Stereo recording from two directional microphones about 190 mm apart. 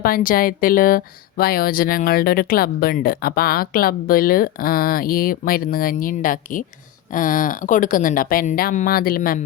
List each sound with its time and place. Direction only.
0.0 s speech: 50° left (ahead or behind)